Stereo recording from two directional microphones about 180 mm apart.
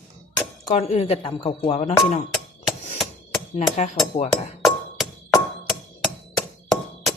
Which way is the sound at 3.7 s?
40° left (ahead or behind).